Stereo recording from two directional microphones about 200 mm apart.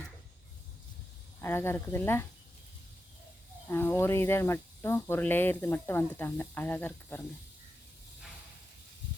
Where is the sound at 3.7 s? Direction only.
10° left (ahead or behind).